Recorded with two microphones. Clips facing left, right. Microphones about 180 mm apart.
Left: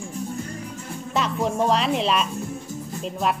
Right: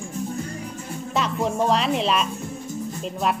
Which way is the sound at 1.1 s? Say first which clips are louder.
Even; centre (ahead or behind).